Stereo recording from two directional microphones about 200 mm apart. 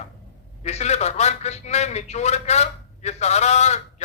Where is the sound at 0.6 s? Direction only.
35° left (ahead or behind).